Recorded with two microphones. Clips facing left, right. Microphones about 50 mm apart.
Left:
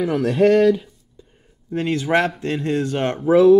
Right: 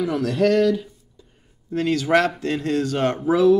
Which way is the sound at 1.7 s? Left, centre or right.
Centre.